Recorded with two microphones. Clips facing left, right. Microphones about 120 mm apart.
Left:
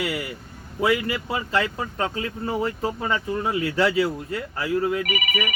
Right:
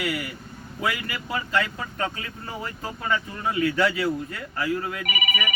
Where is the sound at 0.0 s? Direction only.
30° left (ahead or behind).